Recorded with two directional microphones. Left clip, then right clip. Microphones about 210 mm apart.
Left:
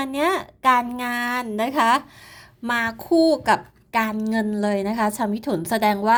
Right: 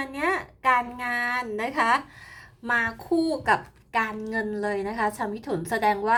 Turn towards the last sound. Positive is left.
turn(degrees=35)  # may be behind; listen again after turning